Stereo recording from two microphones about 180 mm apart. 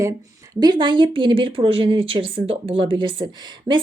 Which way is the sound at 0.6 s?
25° right (ahead or behind).